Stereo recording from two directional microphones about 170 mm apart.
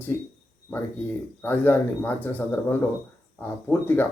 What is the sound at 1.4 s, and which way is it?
Speech, 10° left (ahead or behind).